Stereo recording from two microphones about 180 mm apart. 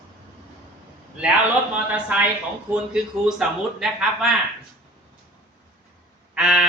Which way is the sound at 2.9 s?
5° right (ahead or behind).